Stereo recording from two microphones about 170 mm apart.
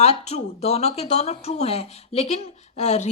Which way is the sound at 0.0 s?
40° left (ahead or behind).